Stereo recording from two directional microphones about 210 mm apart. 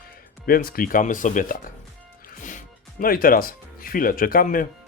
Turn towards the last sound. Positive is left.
turn(degrees=40)  # may be behind; listen again after turning